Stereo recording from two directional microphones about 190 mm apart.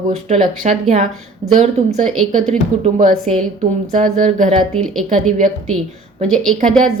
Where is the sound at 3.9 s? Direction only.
40° right (ahead or behind).